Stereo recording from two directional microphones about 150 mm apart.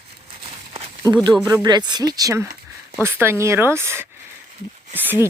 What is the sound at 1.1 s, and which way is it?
Speech, 30° right (ahead or behind).